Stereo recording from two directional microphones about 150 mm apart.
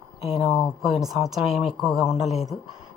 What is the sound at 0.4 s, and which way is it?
Speech, centre (ahead or behind).